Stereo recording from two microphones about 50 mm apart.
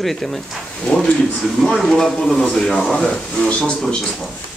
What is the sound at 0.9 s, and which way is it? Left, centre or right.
Speech, centre.